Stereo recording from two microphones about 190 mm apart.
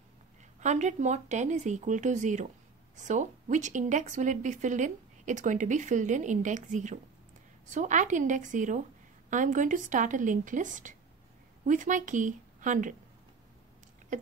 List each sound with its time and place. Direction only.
0.6 s speech: 40° right (ahead or behind)